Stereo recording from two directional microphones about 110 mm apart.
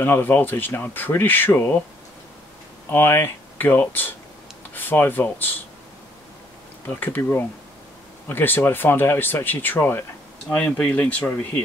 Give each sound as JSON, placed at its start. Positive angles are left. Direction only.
{"t": 0.0, "sound": "speech", "side_deg": 20}
{"t": 2.9, "sound": "speech", "side_deg": 20}
{"t": 6.9, "sound": "speech", "side_deg": 15}